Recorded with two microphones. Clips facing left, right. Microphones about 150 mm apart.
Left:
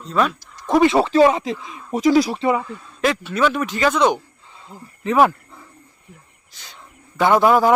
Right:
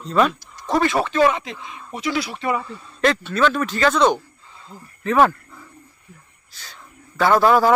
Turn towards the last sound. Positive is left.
turn(degrees=15)  # may be behind; listen again after turning